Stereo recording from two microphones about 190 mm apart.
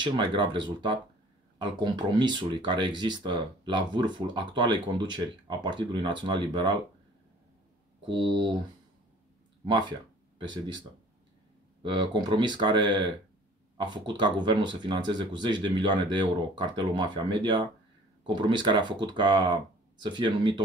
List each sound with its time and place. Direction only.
0.0 s speech: 25° right (ahead or behind)
8.1 s speech: 25° right (ahead or behind)
9.7 s speech: 25° right (ahead or behind)
11.8 s speech: 25° right (ahead or behind)